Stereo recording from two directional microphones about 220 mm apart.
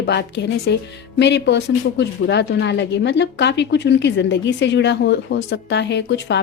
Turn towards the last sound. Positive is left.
turn(degrees=50)  # may be behind; listen again after turning